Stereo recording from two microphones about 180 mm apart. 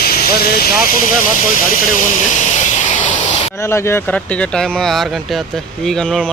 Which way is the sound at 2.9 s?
40° left (ahead or behind).